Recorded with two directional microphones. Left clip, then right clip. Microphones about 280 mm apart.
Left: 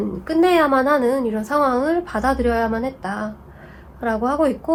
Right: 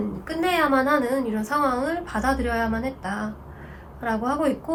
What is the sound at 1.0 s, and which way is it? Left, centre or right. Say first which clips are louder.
A woman's voice: left 5 dB; centre.